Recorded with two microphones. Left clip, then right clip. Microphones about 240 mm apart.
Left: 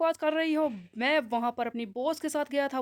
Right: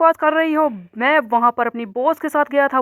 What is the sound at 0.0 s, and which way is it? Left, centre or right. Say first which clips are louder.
Speech: right 12 dB; centre.